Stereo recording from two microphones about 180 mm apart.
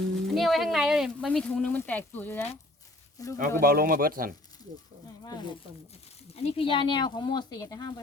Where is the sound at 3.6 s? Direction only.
55° right (ahead or behind).